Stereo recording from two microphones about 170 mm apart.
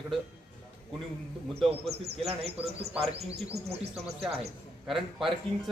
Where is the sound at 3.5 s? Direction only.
35° right (ahead or behind).